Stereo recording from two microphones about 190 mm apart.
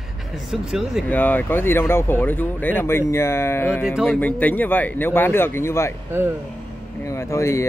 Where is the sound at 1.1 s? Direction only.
10° left (ahead or behind).